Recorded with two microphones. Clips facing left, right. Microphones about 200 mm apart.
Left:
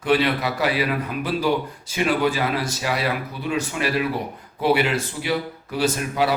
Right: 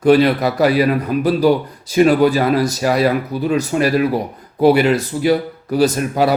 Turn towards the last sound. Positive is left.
turn(degrees=-40)  # may be behind; listen again after turning